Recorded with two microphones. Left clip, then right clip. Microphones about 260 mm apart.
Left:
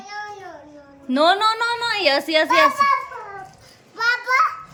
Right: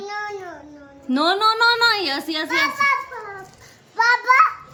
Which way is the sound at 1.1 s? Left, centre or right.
Centre.